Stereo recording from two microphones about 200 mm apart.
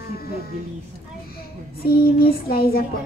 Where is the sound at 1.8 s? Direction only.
50° left (ahead or behind).